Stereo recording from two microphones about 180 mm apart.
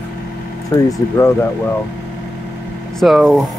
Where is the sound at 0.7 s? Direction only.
20° left (ahead or behind).